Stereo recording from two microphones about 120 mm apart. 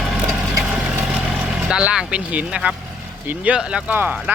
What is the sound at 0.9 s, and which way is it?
Vehicle, 10° right (ahead or behind).